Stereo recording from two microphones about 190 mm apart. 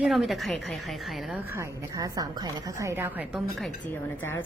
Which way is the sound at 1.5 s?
20° right (ahead or behind).